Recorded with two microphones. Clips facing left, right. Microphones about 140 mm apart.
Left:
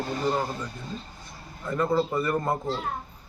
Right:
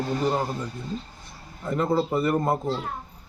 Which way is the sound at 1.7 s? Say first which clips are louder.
Right 1 dB; 20° right (ahead or behind).